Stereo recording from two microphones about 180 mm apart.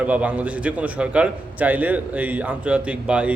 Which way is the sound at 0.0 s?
10° right (ahead or behind).